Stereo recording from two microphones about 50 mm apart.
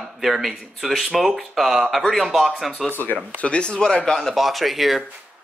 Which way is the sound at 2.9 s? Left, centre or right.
Left.